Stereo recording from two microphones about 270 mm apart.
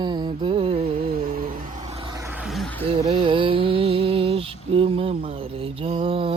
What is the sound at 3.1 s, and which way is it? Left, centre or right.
Mantra, centre.